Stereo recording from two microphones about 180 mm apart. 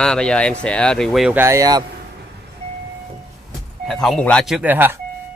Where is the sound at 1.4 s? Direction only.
15° right (ahead or behind).